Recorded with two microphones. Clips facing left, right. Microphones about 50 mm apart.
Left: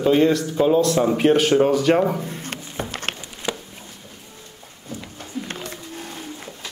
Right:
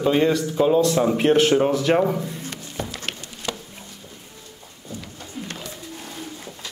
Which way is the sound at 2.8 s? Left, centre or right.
Left.